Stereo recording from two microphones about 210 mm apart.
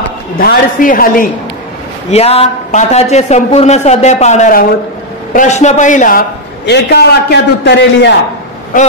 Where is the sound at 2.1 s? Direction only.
30° left (ahead or behind); by 8.1 s 55° left (ahead or behind).